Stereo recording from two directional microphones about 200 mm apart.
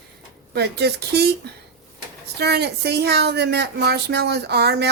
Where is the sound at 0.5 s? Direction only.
55° right (ahead or behind).